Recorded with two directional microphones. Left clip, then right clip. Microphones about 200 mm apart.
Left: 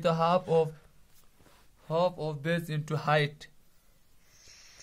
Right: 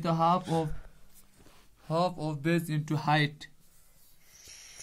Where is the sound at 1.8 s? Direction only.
10° left (ahead or behind); by 3.5 s 30° left (ahead or behind).